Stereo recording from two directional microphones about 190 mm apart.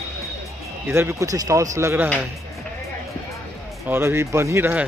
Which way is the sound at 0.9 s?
15° right (ahead or behind).